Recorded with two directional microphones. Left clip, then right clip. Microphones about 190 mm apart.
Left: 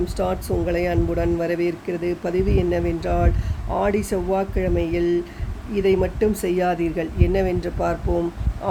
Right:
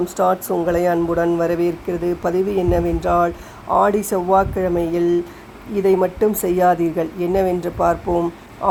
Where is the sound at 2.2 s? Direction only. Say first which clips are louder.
Right 4 dB; 5° right (ahead or behind).